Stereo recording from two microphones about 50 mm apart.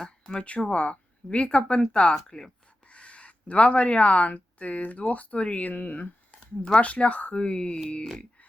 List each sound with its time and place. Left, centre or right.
0.0 s speech: centre
0.4 s speech: left